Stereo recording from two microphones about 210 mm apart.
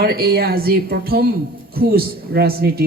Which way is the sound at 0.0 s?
50° right (ahead or behind).